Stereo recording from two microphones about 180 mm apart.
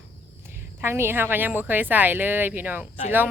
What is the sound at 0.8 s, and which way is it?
Speech, 15° right (ahead or behind).